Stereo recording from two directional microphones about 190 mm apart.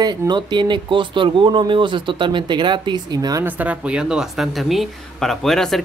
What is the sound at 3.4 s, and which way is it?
Speech, 10° right (ahead or behind).